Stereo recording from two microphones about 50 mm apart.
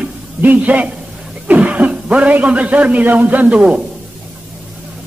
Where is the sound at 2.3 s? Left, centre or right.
Right.